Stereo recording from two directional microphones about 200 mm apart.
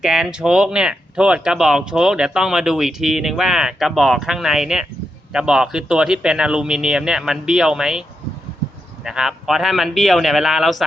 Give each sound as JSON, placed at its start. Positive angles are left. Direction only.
{"t": 0.0, "sound": "speech", "side_deg": -5}
{"t": 9.0, "sound": "speech", "side_deg": 0}